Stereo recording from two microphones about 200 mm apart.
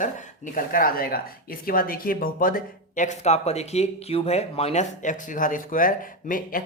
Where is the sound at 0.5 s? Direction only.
45° left (ahead or behind).